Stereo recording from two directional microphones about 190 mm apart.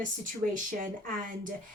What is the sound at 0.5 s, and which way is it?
Speech, 45° right (ahead or behind).